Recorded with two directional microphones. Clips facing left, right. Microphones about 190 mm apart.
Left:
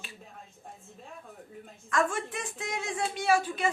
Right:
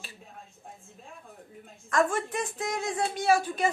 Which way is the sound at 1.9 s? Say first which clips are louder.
Right 3 dB; 40° right (ahead or behind).